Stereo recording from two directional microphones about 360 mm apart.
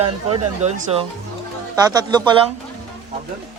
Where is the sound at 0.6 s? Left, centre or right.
Centre.